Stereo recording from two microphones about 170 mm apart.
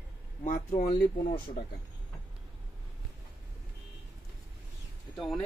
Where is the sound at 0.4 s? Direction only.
45° left (ahead or behind).